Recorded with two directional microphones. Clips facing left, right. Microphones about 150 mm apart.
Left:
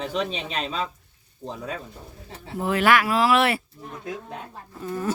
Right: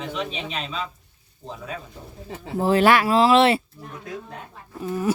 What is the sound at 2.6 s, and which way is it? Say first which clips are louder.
Speech: right 3 dB; 30° right (ahead or behind).